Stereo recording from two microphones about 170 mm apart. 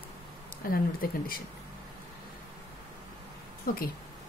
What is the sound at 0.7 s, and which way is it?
Speech, 60° left (ahead or behind).